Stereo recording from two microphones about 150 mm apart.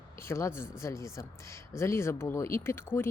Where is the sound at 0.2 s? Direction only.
20° left (ahead or behind).